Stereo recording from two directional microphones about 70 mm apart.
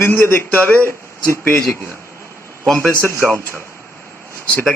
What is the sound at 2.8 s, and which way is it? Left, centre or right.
Speech, left.